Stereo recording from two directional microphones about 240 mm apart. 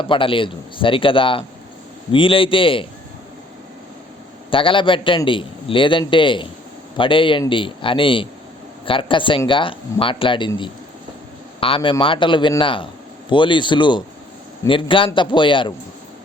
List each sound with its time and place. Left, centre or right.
0.0 s a man's voice: left
4.5 s a man's voice: left
11.6 s a man's voice: left